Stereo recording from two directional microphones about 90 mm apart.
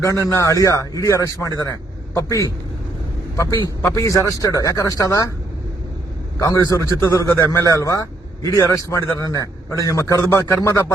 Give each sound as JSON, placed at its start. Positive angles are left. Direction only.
{"t": 0.0, "sound": "a man's voice", "side_deg": 35}
{"t": 3.5, "sound": "a man's voice", "side_deg": 50}
{"t": 3.8, "sound": "a man's voice", "side_deg": 40}
{"t": 6.4, "sound": "a man's voice", "side_deg": 40}